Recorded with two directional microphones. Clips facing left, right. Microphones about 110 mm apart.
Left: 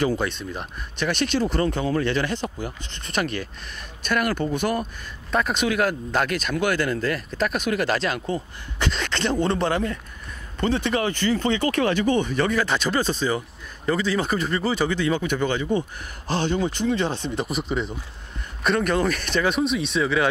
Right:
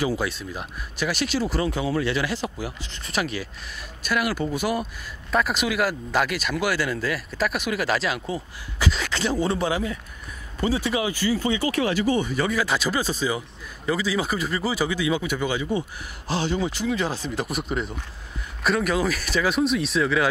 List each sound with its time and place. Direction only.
0.0 s speech: 5° right (ahead or behind)
11.6 s speech: 55° left (ahead or behind)
12.3 s speech: 10° right (ahead or behind)